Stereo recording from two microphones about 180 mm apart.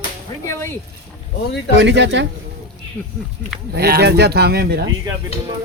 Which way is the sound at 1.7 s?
80° right.